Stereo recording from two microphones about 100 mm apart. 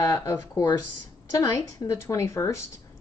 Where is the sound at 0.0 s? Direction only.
35° left (ahead or behind).